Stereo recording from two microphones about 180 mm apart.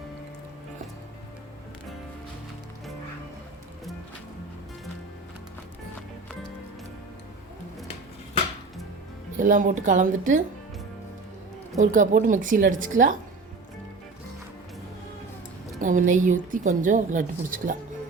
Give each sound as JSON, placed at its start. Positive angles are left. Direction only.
{"t": 9.4, "sound": "a woman's voice", "side_deg": -45}
{"t": 11.8, "sound": "a woman's voice", "side_deg": -45}
{"t": 15.8, "sound": "a woman's voice", "side_deg": -45}